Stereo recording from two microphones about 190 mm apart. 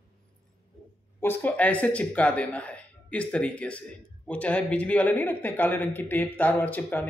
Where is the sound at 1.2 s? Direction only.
10° left (ahead or behind).